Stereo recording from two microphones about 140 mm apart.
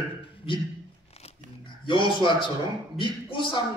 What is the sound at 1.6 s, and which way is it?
A man's voice, 35° left (ahead or behind).